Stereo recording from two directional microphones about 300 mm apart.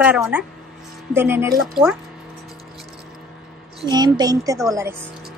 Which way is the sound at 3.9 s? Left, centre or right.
Centre.